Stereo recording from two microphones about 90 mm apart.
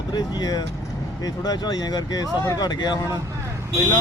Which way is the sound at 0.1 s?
50° left (ahead or behind).